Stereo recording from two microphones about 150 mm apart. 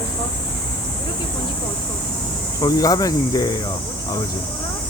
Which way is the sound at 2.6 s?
25° left (ahead or behind).